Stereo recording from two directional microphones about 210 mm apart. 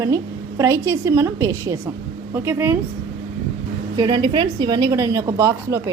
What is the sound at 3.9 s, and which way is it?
A woman's voice, 20° right (ahead or behind).